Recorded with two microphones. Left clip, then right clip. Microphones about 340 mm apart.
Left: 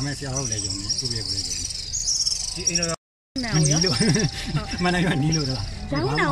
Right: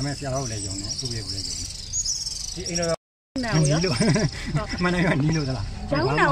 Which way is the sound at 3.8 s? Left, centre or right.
Centre.